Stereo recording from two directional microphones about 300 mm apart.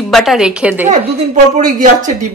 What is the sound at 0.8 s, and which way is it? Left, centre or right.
A woman's voice, right.